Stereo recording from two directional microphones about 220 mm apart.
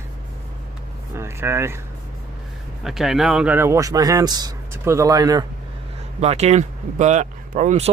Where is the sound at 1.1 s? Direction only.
10° right (ahead or behind).